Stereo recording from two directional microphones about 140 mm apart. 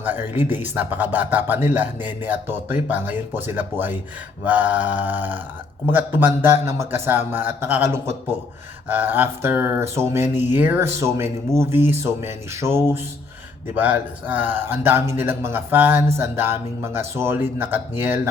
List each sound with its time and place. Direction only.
0.0 s a man's voice: 15° right (ahead or behind)